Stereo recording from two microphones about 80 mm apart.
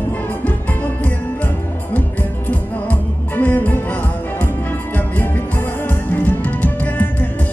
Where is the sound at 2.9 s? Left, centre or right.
Left.